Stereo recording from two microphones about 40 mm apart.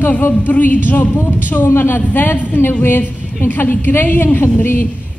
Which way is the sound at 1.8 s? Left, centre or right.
Left.